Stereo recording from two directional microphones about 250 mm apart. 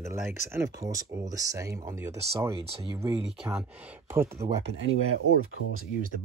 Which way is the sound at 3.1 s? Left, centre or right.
Centre.